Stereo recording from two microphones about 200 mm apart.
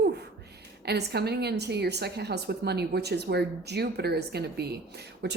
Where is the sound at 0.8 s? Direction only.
55° right (ahead or behind).